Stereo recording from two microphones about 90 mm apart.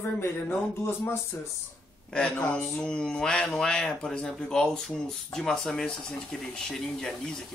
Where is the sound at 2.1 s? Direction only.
15° left (ahead or behind).